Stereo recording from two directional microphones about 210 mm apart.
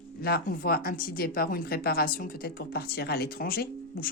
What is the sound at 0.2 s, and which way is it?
Speech, 45° left (ahead or behind).